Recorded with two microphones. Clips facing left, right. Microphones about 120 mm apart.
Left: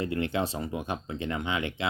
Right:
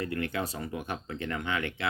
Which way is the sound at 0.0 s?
25° left (ahead or behind).